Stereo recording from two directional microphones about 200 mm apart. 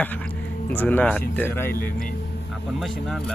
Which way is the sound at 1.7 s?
45° left (ahead or behind).